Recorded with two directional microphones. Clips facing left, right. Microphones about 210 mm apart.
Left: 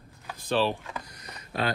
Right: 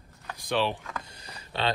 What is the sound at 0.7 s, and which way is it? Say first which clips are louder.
Speech: left 2 dB; 15° left (ahead or behind).